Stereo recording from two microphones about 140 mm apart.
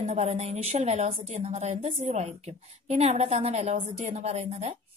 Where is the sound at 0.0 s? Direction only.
55° right (ahead or behind).